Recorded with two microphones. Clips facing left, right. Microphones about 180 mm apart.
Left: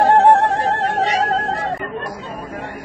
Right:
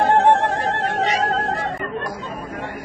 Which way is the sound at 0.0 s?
35° left (ahead or behind).